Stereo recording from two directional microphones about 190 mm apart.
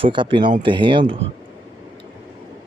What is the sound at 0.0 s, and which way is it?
Speech, 25° right (ahead or behind).